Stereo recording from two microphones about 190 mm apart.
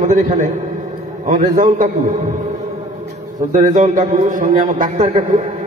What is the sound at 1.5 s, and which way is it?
Speech, 40° right (ahead or behind).